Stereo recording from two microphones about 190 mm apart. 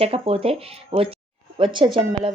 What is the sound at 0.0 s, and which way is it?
Speech, 30° right (ahead or behind).